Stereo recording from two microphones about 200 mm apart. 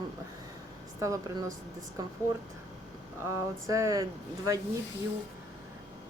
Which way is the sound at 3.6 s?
15° right (ahead or behind).